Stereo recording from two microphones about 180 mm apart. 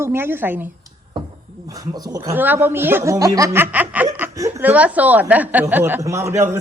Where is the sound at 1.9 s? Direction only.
20° right (ahead or behind).